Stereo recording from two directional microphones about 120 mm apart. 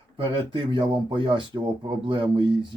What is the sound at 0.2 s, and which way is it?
Speech, 40° right (ahead or behind).